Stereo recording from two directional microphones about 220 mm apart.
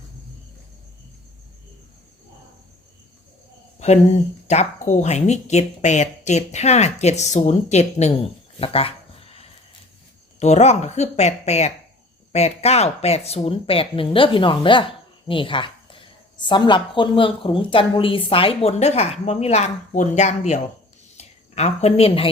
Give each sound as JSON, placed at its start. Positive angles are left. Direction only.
{"t": 3.8, "sound": "a woman's voice", "side_deg": 30}